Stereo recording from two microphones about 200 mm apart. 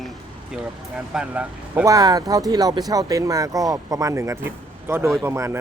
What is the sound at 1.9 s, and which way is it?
Speech, 20° right (ahead or behind).